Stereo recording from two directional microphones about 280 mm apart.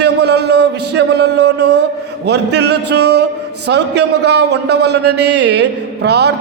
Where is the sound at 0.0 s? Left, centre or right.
Right.